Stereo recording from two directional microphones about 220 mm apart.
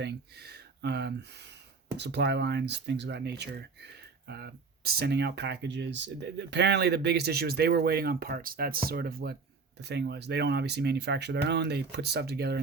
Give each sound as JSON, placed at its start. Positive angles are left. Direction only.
{"t": 0.0, "sound": "speech", "side_deg": -45}